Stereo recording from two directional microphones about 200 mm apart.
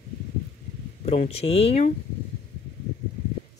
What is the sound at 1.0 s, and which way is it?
Speech, 30° left (ahead or behind).